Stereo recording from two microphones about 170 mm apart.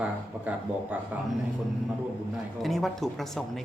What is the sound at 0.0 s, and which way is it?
Speech, 10° right (ahead or behind).